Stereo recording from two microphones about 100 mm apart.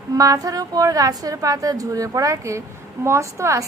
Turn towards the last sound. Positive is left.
turn(degrees=-30)  # may be behind; listen again after turning